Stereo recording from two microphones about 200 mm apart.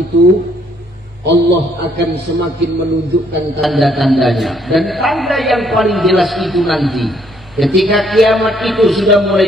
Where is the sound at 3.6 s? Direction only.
Centre (ahead or behind).